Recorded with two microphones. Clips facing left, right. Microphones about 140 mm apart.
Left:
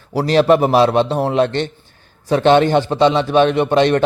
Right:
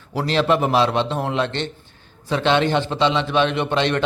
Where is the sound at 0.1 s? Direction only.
40° left (ahead or behind).